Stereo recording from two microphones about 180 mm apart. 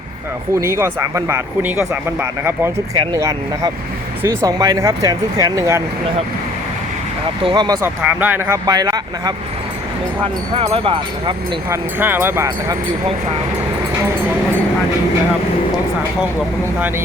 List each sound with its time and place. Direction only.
0.6 s speech: 15° right (ahead or behind)
7.4 s speech: 25° right (ahead or behind)
7.8 s speech: 10° right (ahead or behind)
8.6 s speech: 20° right (ahead or behind)
10.5 s speech: 30° right (ahead or behind)
11.7 s speech: 10° right (ahead or behind)